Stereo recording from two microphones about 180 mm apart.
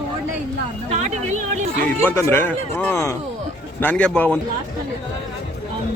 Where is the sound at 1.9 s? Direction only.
15° left (ahead or behind).